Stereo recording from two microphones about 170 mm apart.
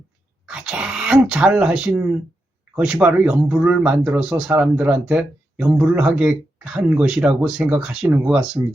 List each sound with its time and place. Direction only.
0.4 s speech: 5° right (ahead or behind)